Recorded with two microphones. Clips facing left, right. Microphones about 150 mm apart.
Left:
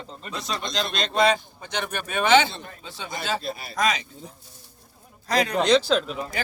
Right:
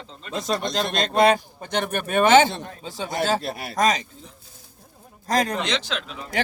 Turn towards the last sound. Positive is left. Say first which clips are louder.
# left 8 dB
turn(degrees=35)  # may be behind; listen again after turning